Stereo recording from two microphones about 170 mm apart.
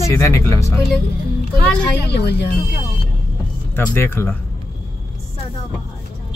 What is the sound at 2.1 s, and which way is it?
Speech, 70° left (ahead or behind).